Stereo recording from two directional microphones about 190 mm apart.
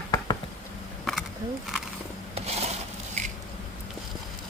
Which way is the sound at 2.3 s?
35° right (ahead or behind).